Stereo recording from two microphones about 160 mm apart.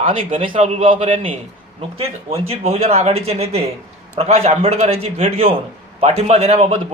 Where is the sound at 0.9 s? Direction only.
50° right (ahead or behind).